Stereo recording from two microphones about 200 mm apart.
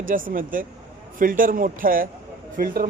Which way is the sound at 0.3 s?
45° right (ahead or behind).